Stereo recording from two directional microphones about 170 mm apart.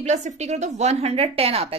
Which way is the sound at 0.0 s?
45° right (ahead or behind).